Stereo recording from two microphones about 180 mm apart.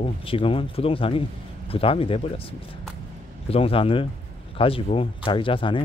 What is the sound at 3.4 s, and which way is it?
Speech, 35° left (ahead or behind).